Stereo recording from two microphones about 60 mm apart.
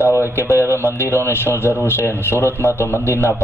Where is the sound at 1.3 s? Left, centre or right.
Left.